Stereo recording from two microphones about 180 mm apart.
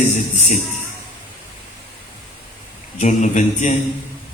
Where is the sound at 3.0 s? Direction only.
45° left (ahead or behind).